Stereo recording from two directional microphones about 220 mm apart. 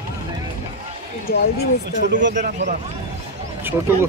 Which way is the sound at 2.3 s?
35° right (ahead or behind).